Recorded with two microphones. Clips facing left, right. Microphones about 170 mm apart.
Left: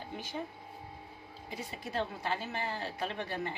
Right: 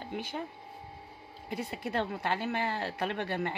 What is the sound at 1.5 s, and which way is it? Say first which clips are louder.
Speech: right 5 dB; 60° right (ahead or behind).